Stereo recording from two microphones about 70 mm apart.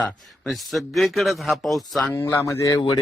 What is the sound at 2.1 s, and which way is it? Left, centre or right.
Speech, left.